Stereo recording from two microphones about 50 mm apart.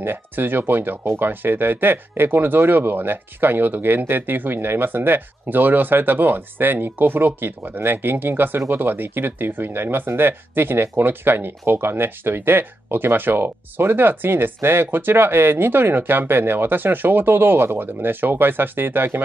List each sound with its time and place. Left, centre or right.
0.0 s speech: right